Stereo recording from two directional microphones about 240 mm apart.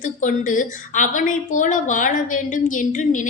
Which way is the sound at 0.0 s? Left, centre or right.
Left.